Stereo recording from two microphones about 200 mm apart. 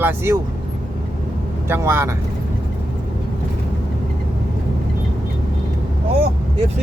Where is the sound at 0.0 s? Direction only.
10° right (ahead or behind).